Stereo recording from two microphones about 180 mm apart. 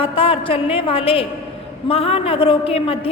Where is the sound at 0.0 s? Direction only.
30° left (ahead or behind).